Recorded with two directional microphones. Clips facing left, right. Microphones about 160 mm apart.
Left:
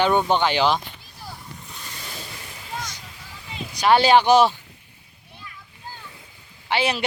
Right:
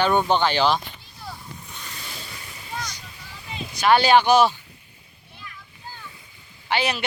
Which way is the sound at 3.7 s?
30° left (ahead or behind).